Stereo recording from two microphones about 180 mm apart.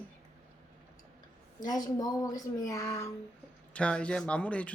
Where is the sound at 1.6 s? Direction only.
20° left (ahead or behind).